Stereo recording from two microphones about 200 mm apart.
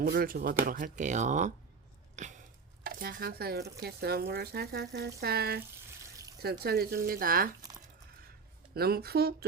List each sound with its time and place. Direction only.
0.0 s speech: 50° right (ahead or behind)
2.1 s a sound: 35° right (ahead or behind)
2.8 s speech: 45° right (ahead or behind)
8.7 s speech: 50° right (ahead or behind)